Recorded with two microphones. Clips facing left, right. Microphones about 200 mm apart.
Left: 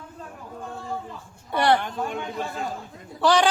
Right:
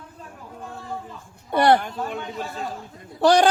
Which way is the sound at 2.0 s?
Centre (ahead or behind).